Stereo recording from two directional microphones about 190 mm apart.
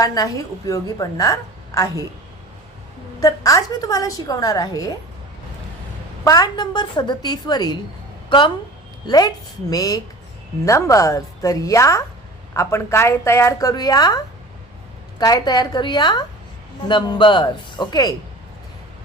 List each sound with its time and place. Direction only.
0.0 s a woman's voice: 20° left (ahead or behind)
3.2 s a woman's voice: 15° left (ahead or behind)
6.2 s a woman's voice: 20° left (ahead or behind)
15.2 s a woman's voice: 20° left (ahead or behind)